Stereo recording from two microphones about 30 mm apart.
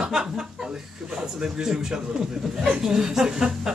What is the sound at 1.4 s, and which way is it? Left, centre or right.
Speech, right.